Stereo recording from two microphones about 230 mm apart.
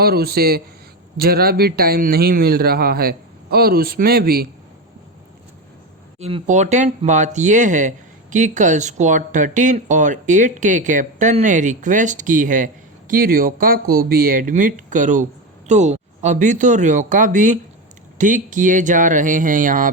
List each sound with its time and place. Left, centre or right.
0.0 s speech: right
6.1 s speech: right